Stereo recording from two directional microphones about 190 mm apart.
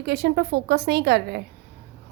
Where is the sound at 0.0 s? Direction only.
60° right (ahead or behind).